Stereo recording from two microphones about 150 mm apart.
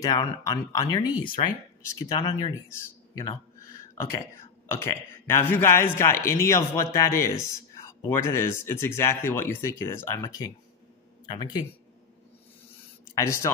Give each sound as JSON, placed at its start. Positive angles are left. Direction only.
{"t": 0.0, "sound": "speech", "side_deg": 25}
{"t": 4.6, "sound": "a man's voice", "side_deg": 15}
{"t": 13.2, "sound": "speech", "side_deg": 20}